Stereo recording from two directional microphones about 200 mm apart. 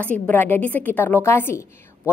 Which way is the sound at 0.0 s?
10° left (ahead or behind).